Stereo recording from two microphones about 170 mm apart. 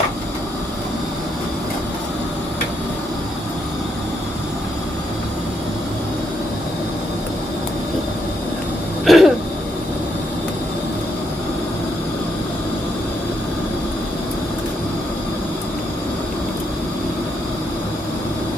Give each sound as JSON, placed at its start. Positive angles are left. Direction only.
{"t": 9.0, "sound": "throat clearing", "side_deg": 0}